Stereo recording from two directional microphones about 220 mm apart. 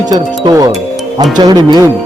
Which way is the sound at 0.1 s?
15° right (ahead or behind).